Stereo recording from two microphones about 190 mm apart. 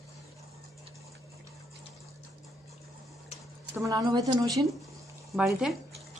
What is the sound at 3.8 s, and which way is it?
Speech, 20° right (ahead or behind).